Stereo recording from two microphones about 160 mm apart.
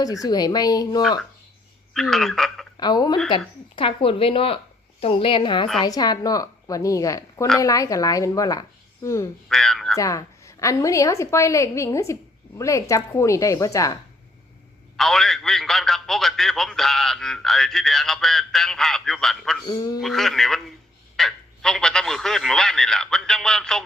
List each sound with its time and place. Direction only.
0.0 s a woman's voice: 20° left (ahead or behind)
1.9 s a man's voice: centre (ahead or behind)
2.7 s a woman's voice: 25° left (ahead or behind)
9.5 s a man's voice: 5° left (ahead or behind)
10.0 s a woman's voice: 20° left (ahead or behind)
14.9 s a man's voice: centre (ahead or behind)
19.6 s a woman's voice: 25° left (ahead or behind)
20.0 s a man's voice: centre (ahead or behind)